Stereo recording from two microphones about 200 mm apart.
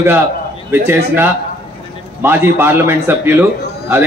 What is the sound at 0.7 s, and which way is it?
A man's voice, 10° right (ahead or behind).